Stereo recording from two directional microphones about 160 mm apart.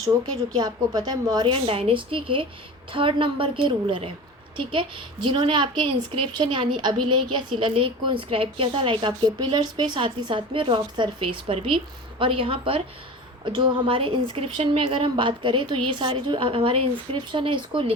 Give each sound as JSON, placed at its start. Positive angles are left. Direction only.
{"t": 0.5, "sound": "a woman's voice", "side_deg": -25}